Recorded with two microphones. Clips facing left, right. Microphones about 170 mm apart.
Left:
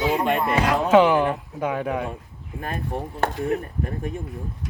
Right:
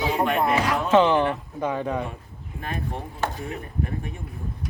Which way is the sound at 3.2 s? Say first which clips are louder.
Left 6 dB; 60° left (ahead or behind).